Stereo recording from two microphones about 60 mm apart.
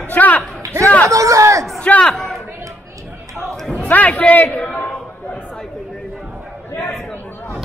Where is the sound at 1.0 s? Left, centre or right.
Right.